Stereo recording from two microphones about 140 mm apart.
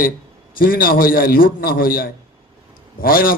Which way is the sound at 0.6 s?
90° left.